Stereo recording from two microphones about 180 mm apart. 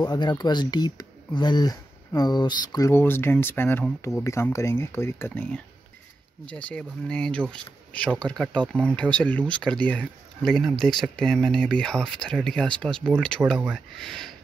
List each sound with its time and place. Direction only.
0.0 s speech: 25° left (ahead or behind); by 14.3 s centre (ahead or behind)